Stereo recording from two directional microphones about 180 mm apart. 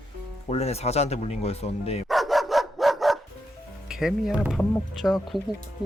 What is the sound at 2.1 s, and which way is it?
Dog, centre (ahead or behind).